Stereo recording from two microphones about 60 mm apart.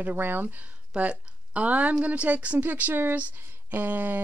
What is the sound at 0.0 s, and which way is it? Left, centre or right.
Speech, right.